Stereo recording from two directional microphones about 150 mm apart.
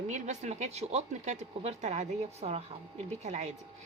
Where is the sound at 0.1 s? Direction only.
50° right (ahead or behind).